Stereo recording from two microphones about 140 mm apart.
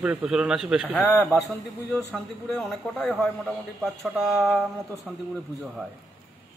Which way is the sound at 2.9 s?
5° right (ahead or behind).